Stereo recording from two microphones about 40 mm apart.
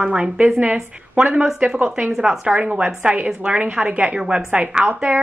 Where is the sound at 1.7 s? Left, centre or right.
Right.